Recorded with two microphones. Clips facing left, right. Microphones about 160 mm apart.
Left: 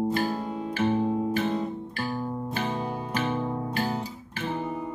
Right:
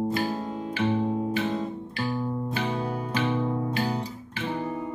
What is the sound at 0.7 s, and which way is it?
Music, 45° left (ahead or behind).